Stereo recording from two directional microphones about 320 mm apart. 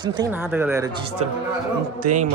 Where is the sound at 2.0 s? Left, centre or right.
Right.